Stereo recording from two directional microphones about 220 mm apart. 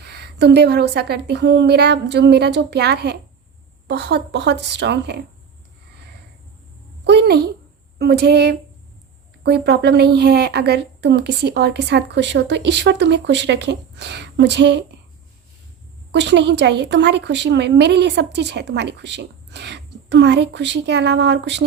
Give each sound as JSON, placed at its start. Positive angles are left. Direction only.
{"t": 0.0, "sound": "speech", "side_deg": -45}
{"t": 7.0, "sound": "a sound", "side_deg": -50}
{"t": 7.9, "sound": "speech", "side_deg": -45}
{"t": 16.1, "sound": "speech", "side_deg": -50}